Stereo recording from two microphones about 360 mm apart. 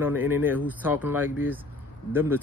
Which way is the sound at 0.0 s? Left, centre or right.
Centre.